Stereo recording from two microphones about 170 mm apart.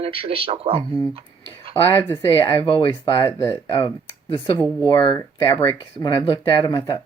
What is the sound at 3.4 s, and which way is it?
Speech, 15° left (ahead or behind).